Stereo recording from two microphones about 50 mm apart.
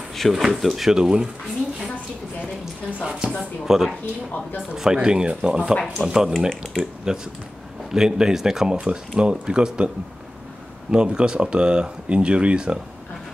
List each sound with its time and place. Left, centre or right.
0.1 s drawer open or close: centre
0.4 s speech: centre
2.6 s speech: centre
10.9 s speech: centre